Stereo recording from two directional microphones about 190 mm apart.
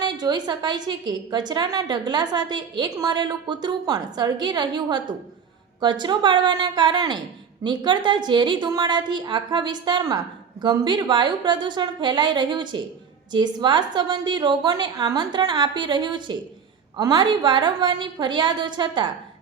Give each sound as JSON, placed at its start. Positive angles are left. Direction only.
{"t": 0.0, "sound": "a woman's voice", "side_deg": -20}